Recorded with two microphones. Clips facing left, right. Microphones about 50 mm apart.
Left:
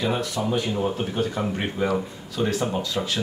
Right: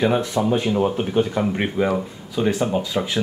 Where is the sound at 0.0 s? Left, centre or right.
Right.